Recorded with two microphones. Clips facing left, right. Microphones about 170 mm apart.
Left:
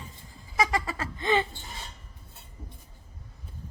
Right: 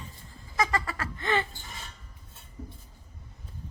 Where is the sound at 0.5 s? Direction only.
15° left (ahead or behind).